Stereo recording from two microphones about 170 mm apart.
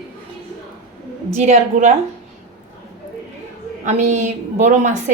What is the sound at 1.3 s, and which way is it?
Speech, 40° right (ahead or behind).